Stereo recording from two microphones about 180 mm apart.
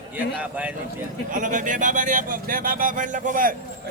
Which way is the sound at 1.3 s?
45° right (ahead or behind).